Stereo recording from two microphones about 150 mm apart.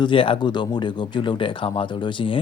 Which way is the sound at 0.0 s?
35° left (ahead or behind).